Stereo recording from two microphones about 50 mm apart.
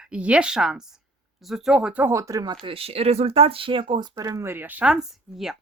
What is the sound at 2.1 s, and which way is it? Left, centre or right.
Speech, right.